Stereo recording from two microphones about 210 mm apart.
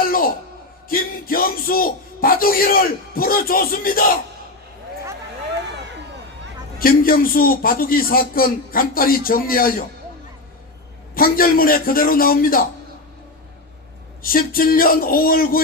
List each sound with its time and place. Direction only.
0.0 s a sound: 45° left (ahead or behind)
0.9 s speech: 45° left (ahead or behind)
6.7 s speech: 45° left (ahead or behind)
11.1 s speech: 45° left (ahead or behind)
14.2 s speech: 45° left (ahead or behind)